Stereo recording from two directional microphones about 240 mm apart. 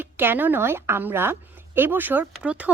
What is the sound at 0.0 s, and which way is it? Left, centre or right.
A woman's voice, centre.